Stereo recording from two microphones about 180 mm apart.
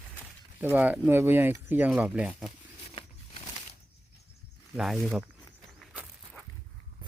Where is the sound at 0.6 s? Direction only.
10° right (ahead or behind).